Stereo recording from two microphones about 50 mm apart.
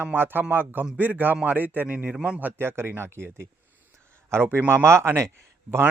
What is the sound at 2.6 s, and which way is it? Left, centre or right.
Speech, right.